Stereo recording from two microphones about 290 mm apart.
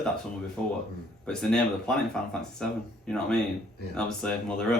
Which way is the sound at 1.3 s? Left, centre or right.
Centre.